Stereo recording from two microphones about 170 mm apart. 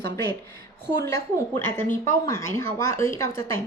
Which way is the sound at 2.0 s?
15° left (ahead or behind).